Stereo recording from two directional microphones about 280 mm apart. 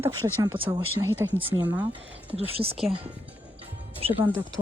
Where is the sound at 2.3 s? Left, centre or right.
Centre.